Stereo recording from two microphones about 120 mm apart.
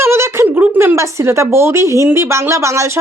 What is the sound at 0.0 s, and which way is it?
A woman's voice, 20° right (ahead or behind).